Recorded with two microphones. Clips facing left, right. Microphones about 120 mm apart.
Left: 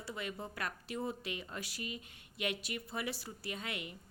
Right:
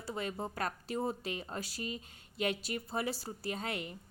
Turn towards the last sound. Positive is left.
turn(degrees=-35)  # may be behind; listen again after turning